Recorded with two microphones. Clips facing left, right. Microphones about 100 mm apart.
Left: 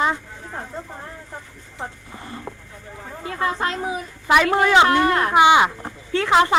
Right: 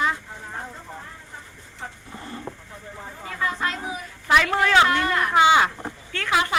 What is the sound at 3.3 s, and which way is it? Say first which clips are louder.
Speech: left 3 dB; 30° left (ahead or behind).